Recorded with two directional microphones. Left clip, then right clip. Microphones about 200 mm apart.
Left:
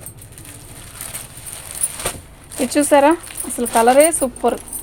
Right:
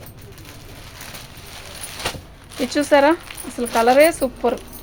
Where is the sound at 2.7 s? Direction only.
25° left (ahead or behind).